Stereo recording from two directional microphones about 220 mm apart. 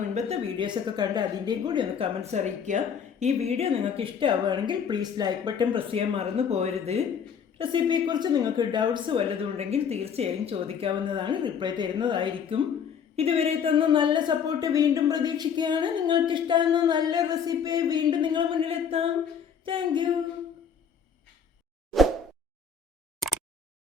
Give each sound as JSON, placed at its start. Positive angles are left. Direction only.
{"t": 0.1, "sound": "a woman's voice", "side_deg": -30}
{"t": 21.8, "sound": "plop", "side_deg": 0}